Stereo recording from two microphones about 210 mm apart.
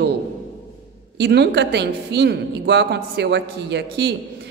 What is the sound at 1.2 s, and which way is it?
A woman's voice, 50° right (ahead or behind).